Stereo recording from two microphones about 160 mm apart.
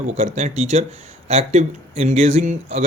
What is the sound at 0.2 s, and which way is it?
Speech, 45° right (ahead or behind).